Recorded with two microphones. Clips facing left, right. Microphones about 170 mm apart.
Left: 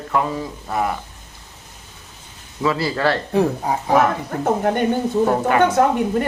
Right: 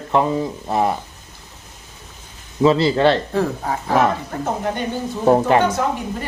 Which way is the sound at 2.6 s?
25° right (ahead or behind).